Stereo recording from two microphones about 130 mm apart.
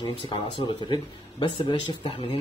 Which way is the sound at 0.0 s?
35° left (ahead or behind).